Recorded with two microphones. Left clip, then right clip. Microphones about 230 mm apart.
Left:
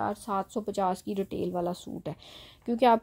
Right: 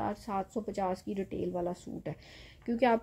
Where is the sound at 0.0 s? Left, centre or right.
Left.